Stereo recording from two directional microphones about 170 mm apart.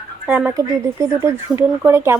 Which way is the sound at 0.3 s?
10° right (ahead or behind).